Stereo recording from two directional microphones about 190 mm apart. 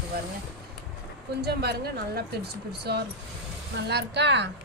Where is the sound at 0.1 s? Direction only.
55° right (ahead or behind).